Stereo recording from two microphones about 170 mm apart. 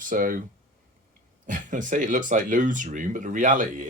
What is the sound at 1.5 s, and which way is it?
Speech, 50° right (ahead or behind).